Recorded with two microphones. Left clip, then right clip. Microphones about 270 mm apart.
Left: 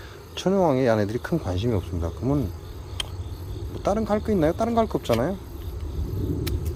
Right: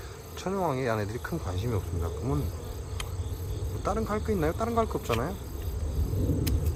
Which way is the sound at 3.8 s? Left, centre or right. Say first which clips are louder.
Left 6 dB; left.